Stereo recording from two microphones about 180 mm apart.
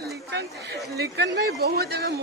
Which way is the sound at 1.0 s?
65° right (ahead or behind).